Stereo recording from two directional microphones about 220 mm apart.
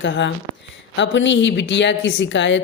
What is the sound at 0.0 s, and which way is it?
A woman's voice, 55° left (ahead or behind).